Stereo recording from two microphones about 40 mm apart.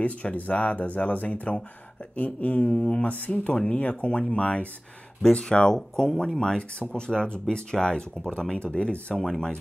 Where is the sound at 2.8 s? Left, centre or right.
Left.